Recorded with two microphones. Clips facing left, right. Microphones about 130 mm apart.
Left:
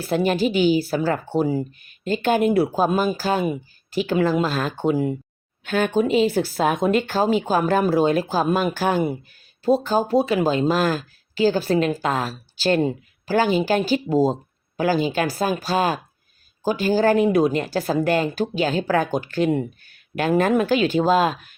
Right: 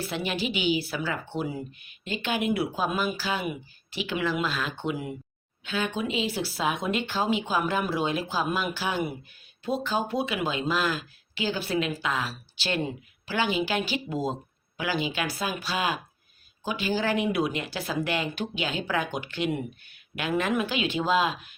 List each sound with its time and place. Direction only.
0.0 s a woman's voice: 45° left (ahead or behind)
5.6 s a woman's voice: 50° left (ahead or behind)